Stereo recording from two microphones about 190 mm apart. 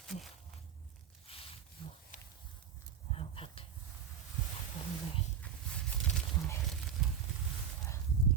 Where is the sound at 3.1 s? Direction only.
30° left (ahead or behind).